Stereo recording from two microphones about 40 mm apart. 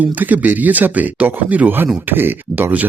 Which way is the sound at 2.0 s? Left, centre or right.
Right.